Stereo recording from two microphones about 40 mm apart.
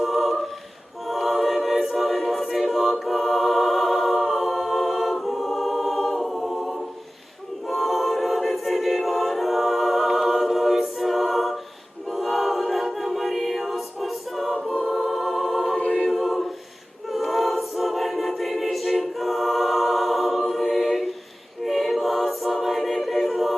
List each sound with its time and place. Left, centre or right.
0.0 s a capella: centre
1.0 s choir: centre
2.5 s music: centre
7.7 s a capella: centre
12.0 s choir: centre
14.8 s music: centre
15.8 s choir: left
16.1 s a capella: centre
17.1 s choir: centre
21.6 s a capella: centre